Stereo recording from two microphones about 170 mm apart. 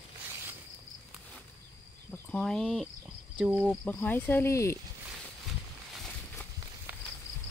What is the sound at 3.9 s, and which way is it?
Speech, 10° left (ahead or behind).